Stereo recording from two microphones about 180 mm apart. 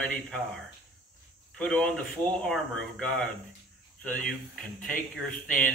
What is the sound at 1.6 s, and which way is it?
A man's voice, 5° left (ahead or behind).